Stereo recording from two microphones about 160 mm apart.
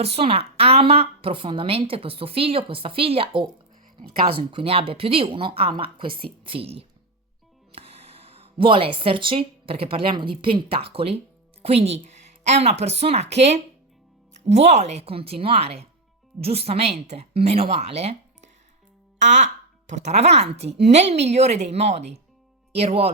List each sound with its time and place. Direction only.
0.0 s a woman's voice: 40° right (ahead or behind)